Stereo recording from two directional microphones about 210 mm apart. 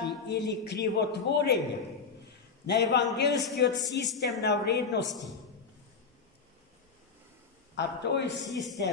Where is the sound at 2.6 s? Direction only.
55° left (ahead or behind).